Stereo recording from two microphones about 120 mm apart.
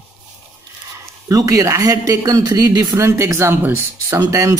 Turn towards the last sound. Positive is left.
turn(degrees=-25)  # may be behind; listen again after turning